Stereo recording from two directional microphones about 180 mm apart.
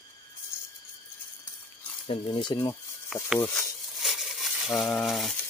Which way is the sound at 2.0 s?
30° left (ahead or behind).